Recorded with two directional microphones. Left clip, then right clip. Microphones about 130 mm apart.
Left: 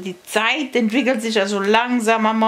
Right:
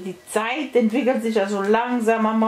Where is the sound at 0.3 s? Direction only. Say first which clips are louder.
Left 3 dB; 40° left (ahead or behind).